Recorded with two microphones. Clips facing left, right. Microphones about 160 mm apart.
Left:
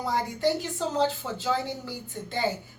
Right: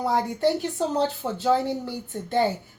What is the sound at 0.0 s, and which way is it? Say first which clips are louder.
Speech: right 4 dB; 60° right (ahead or behind).